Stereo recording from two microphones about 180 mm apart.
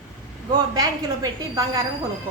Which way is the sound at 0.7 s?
20° right (ahead or behind).